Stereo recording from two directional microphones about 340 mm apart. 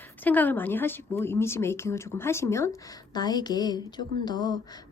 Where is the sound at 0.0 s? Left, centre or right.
Centre.